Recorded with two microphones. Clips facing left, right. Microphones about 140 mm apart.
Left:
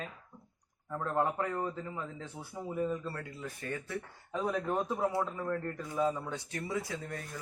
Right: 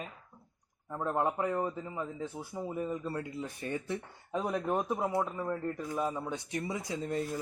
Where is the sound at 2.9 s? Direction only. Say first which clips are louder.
Right 2 dB; 15° right (ahead or behind).